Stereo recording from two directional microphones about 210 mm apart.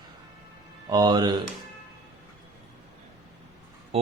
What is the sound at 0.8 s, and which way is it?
Speech, 20° right (ahead or behind).